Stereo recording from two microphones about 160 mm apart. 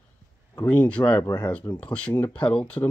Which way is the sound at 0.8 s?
10° left (ahead or behind).